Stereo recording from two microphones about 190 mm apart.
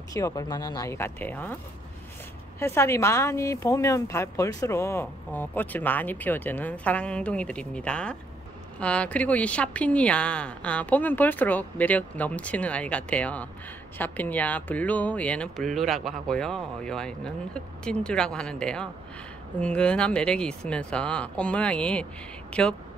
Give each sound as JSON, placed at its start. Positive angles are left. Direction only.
{"t": 0.1, "sound": "speech", "side_deg": 20}
{"t": 2.6, "sound": "speech", "side_deg": 15}